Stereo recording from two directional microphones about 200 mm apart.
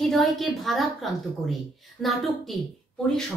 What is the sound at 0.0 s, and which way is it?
A woman's voice, centre (ahead or behind).